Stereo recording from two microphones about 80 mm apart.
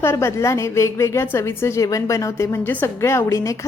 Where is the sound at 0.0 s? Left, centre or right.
Left.